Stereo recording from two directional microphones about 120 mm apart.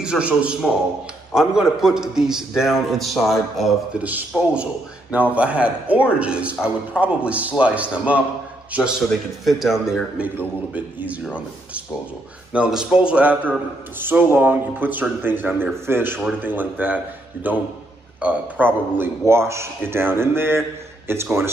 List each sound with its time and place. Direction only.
0.0 s a man's voice: 10° right (ahead or behind)
9.4 s a man's voice: centre (ahead or behind)
12.5 s a man's voice: 10° right (ahead or behind)